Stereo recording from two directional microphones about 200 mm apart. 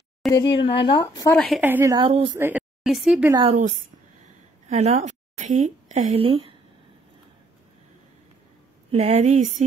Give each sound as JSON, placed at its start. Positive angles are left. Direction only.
{"t": 0.2, "sound": "a woman's voice", "side_deg": 0}
{"t": 0.6, "sound": "speech", "side_deg": 25}
{"t": 1.3, "sound": "a woman's voice", "side_deg": 5}
{"t": 1.6, "sound": "a woman's voice", "side_deg": -10}
{"t": 2.3, "sound": "a woman's voice", "side_deg": -10}
{"t": 3.4, "sound": "a woman's voice", "side_deg": -35}
{"t": 8.9, "sound": "speech", "side_deg": -35}